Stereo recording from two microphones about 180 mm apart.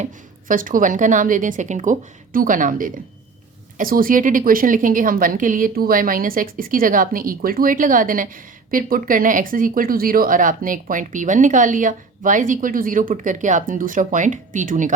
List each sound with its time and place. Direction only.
0.0 s speech: 50° right (ahead or behind)